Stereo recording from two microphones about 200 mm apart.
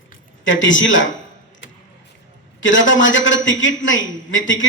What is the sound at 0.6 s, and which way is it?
Speech, 70° left (ahead or behind).